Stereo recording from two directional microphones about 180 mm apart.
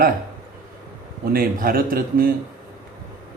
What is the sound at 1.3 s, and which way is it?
Speech, 55° right (ahead or behind).